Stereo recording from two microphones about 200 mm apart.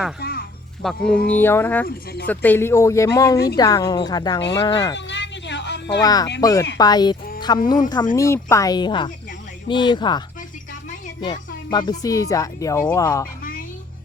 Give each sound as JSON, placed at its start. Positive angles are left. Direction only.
{"t": 0.2, "sound": "music", "side_deg": 50}
{"t": 0.8, "sound": "speech", "side_deg": 5}
{"t": 4.9, "sound": "a sound", "side_deg": 60}
{"t": 6.0, "sound": "speech", "side_deg": 20}